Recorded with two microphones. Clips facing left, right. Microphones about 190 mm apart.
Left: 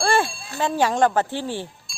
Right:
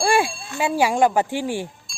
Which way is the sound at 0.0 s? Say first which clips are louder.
Right 1 dB; 10° right (ahead or behind).